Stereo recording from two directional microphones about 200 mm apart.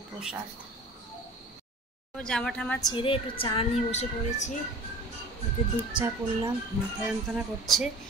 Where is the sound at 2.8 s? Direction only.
20° left (ahead or behind).